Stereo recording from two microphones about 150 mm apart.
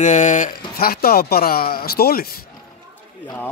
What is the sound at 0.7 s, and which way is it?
Speech, 90° left.